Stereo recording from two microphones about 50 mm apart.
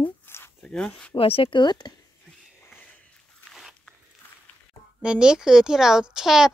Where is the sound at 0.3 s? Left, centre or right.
Left.